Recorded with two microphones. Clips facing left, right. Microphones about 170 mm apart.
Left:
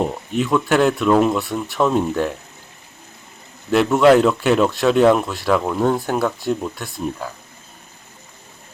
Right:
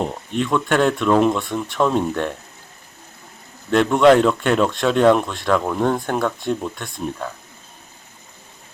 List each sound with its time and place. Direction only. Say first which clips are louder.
0.0 s speech: left 2 dB; 5° left (ahead or behind)
3.7 s speech: even; 5° left (ahead or behind)